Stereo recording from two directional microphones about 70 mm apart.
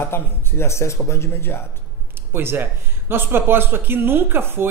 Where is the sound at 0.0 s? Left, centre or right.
Left.